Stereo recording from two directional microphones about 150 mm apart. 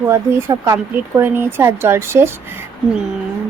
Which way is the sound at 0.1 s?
20° right (ahead or behind).